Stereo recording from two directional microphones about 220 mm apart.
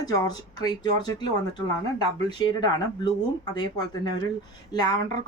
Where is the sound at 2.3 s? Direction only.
20° left (ahead or behind).